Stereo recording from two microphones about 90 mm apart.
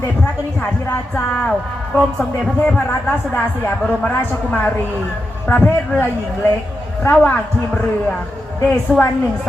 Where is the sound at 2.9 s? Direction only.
20° left (ahead or behind).